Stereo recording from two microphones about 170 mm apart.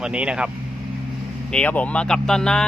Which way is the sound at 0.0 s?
5° right (ahead or behind).